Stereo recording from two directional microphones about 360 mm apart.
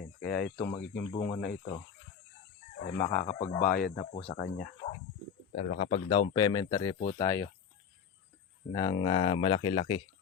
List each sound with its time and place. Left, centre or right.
0.2 s speech: left
8.7 s speech: centre